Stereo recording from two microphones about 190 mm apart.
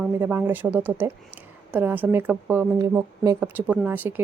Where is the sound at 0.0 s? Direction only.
10° right (ahead or behind).